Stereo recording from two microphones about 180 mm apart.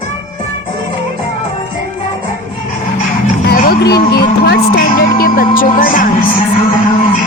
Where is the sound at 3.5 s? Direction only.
55° left (ahead or behind).